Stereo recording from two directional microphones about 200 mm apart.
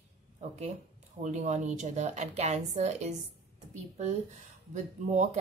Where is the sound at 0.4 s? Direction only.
35° right (ahead or behind).